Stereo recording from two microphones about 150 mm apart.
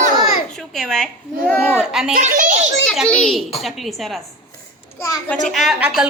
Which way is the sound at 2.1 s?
60° right (ahead or behind).